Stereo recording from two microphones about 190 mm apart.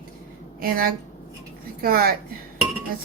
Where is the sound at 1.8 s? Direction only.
50° right (ahead or behind).